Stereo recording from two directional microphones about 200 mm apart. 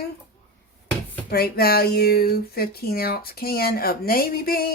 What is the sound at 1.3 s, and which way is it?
Speech, 50° left (ahead or behind).